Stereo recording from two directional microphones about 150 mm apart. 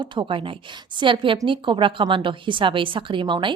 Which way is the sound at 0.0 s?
30° right (ahead or behind).